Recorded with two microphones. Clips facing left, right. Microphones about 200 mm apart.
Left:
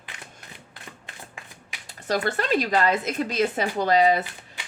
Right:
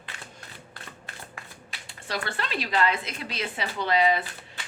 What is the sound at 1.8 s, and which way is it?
Speech, 40° left (ahead or behind).